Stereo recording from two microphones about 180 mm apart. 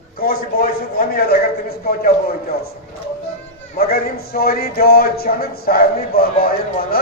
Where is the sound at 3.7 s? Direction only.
60° left (ahead or behind).